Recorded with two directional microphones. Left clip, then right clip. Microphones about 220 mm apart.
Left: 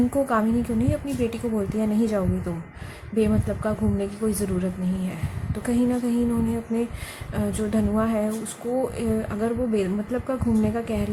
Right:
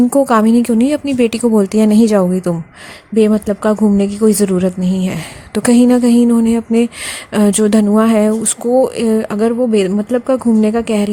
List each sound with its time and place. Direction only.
0.1 s a woman's voice: 45° right (ahead or behind)